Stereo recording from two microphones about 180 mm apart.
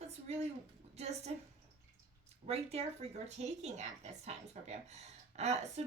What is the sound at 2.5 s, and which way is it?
Speech, 35° right (ahead or behind).